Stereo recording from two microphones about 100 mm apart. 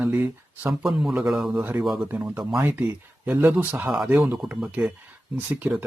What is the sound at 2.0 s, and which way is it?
Speech, 15° right (ahead or behind).